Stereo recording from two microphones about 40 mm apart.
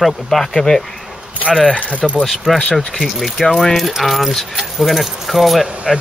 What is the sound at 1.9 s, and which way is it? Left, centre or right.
Speech, right.